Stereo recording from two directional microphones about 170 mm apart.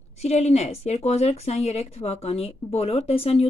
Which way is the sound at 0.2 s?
40° left (ahead or behind).